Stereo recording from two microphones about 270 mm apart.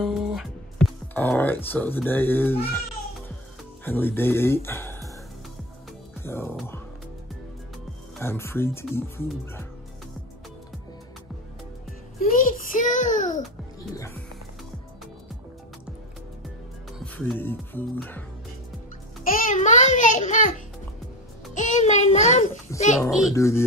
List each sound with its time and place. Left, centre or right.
0.0 s speech: centre
3.8 s speech: centre
6.2 s speech: centre
8.2 s speech: centre
12.2 s a child's voice: left
17.0 s speech: centre
19.2 s a child's voice: left
22.9 s a child's voice: centre
23.3 s speech: centre